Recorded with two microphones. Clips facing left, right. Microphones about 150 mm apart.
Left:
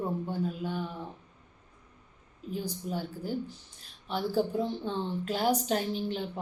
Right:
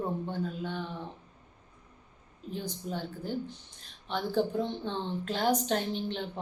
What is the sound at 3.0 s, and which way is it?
Speech, 10° left (ahead or behind).